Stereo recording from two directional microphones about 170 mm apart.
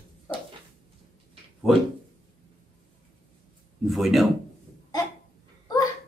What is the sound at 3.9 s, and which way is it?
Speech, centre (ahead or behind).